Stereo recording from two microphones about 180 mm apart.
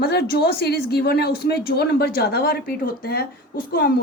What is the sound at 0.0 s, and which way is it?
Speech, 60° left (ahead or behind).